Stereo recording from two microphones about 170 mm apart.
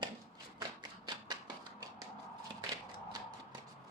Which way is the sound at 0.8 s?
25° right (ahead or behind).